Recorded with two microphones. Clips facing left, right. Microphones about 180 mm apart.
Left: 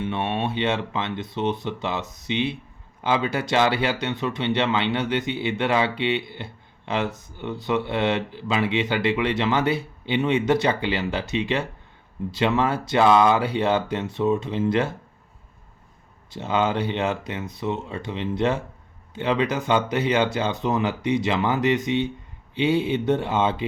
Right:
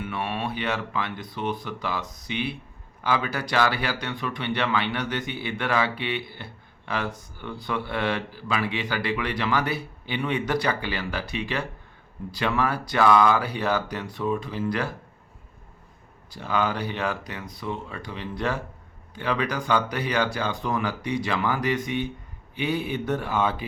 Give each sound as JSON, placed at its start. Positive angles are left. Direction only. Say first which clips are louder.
{"t": 0.0, "sound": "speech", "louder": "left 4 dB", "side_deg": 25}
{"t": 16.3, "sound": "speech", "louder": "left 3 dB", "side_deg": 25}